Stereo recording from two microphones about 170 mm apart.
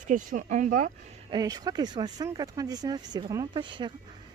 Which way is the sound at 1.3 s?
25° right (ahead or behind).